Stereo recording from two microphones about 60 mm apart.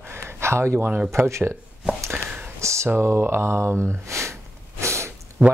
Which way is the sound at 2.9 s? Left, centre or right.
Right.